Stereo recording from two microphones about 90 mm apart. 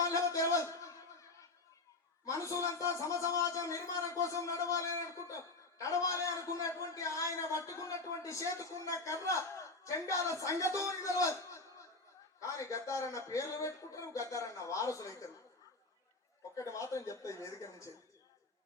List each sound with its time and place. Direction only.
0.0 s a sound: 35° left (ahead or behind)
2.2 s a man's voice: 40° left (ahead or behind)
16.6 s speech: 35° left (ahead or behind)